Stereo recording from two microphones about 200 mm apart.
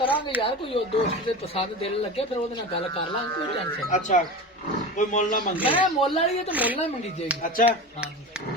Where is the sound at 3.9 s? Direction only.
40° left (ahead or behind).